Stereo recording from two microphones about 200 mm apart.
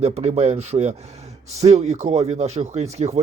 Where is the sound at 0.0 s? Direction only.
30° right (ahead or behind).